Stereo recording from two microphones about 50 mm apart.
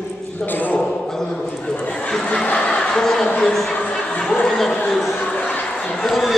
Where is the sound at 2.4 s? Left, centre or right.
Left.